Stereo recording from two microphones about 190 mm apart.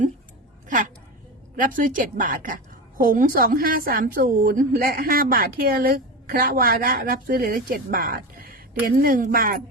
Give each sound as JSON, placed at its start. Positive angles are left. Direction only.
{"t": 1.5, "sound": "a woman's voice", "side_deg": -45}